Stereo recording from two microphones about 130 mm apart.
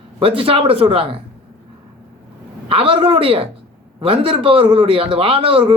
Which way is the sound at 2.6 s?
45° right (ahead or behind).